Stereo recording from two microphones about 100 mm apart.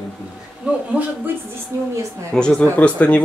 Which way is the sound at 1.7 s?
30° right (ahead or behind).